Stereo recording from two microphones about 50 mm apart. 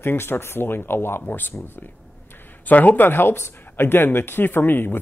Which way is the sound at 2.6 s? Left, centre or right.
Left.